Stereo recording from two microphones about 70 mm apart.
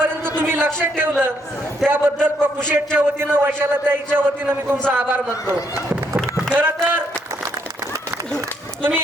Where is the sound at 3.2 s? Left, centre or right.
Right.